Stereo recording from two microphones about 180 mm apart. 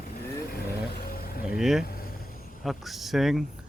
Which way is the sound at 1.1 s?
55° left (ahead or behind).